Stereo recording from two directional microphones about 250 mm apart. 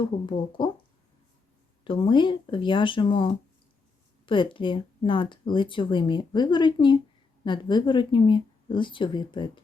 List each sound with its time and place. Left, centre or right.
0.3 s speech: centre
1.8 s speech: centre